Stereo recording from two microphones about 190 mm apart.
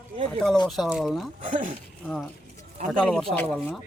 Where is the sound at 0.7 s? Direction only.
5° right (ahead or behind).